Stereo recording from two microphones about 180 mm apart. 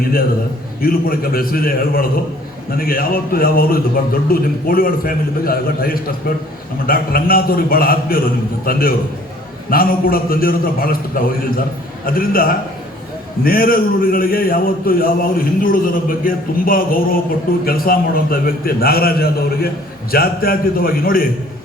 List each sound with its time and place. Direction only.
0.8 s a man's voice: 55° left (ahead or behind)